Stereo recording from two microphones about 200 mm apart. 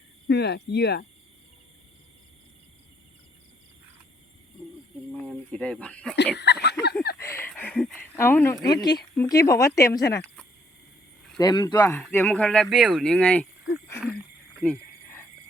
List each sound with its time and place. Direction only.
0.3 s cricket: 55° left (ahead or behind)
5.5 s speech: 5° left (ahead or behind)
6.3 s speech: 55° left (ahead or behind)
7.2 s a sound: 15° left (ahead or behind)
8.1 s speech: 10° left (ahead or behind)
11.3 s speech: 20° left (ahead or behind)
14.6 s a sound: 10° left (ahead or behind)